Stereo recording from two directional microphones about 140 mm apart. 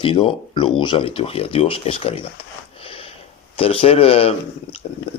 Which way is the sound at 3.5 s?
40° left (ahead or behind).